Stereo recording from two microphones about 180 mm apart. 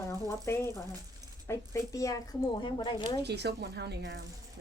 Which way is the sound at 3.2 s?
65° right (ahead or behind).